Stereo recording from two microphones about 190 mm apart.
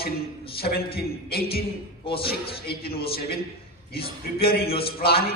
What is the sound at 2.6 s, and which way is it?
A man's voice, 55° left (ahead or behind).